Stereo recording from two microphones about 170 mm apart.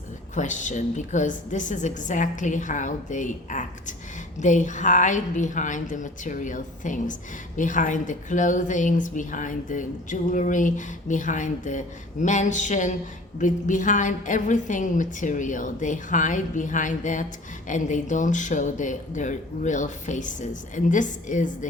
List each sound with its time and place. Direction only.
0.3 s a woman's voice: 45° left (ahead or behind)